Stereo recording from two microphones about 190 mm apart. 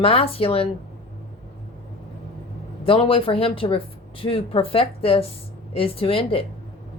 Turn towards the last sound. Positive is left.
turn(degrees=30)  # may be behind; listen again after turning